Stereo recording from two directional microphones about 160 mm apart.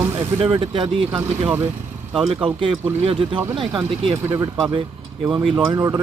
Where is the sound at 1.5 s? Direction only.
15° right (ahead or behind).